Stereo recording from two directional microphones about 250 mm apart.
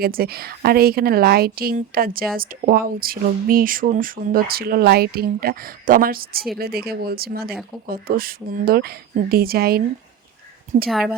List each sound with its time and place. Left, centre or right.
0.0 s a woman's voice: right
10.8 s a woman's voice: centre